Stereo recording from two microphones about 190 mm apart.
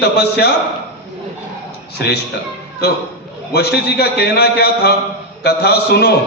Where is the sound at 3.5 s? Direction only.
55° left (ahead or behind).